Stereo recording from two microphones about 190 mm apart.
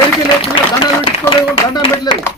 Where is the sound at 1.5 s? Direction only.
30° left (ahead or behind).